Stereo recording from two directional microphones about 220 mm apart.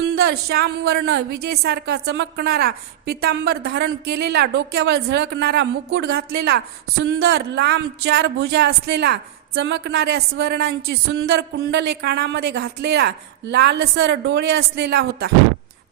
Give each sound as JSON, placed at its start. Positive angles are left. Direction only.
{"t": 0.1, "sound": "a woman's voice", "side_deg": -45}